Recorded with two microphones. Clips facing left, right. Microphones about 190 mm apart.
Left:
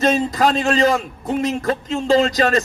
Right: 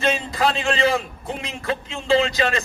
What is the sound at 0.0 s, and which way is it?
A man's voice, 40° left (ahead or behind).